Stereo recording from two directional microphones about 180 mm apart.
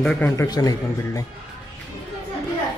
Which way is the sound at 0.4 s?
20° left (ahead or behind).